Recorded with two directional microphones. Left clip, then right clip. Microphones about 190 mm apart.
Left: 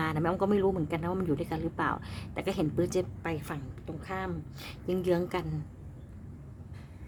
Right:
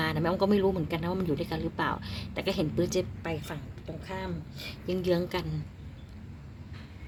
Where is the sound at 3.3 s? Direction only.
20° left (ahead or behind).